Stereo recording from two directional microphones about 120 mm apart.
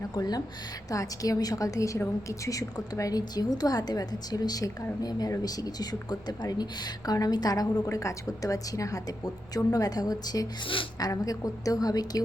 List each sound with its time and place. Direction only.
0.1 s a woman's voice: 35° left (ahead or behind)